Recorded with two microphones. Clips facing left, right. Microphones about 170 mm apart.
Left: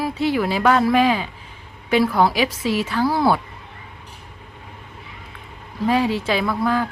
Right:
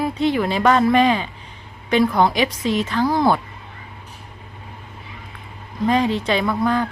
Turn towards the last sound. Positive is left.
turn(degrees=5)  # may be behind; listen again after turning